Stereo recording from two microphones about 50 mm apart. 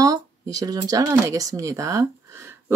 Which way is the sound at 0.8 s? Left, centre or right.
Right.